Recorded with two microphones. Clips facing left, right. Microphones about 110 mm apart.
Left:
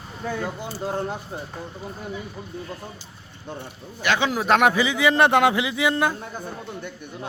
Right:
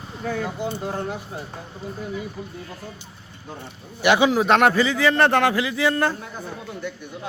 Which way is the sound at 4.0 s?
15° right (ahead or behind).